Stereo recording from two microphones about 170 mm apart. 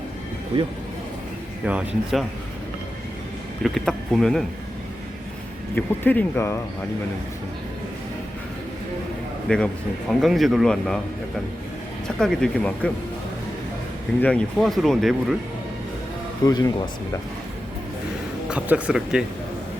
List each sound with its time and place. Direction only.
0.5 s speech: 35° right (ahead or behind)
1.6 s speech: 5° right (ahead or behind)
3.6 s speech: 5° left (ahead or behind)
5.7 s speech: 10° left (ahead or behind)
9.5 s speech: 5° left (ahead or behind)
12.0 s speech: 5° left (ahead or behind)
14.2 s speech: 5° left (ahead or behind)
16.5 s speech: 25° left (ahead or behind)
18.4 s speech: 5° right (ahead or behind)